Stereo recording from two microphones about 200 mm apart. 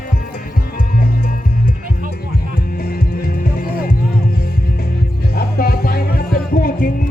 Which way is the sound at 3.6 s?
45° left (ahead or behind).